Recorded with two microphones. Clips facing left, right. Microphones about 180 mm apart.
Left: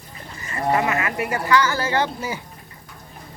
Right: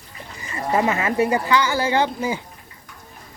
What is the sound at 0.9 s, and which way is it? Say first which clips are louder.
Speech: right 4 dB; 25° right (ahead or behind).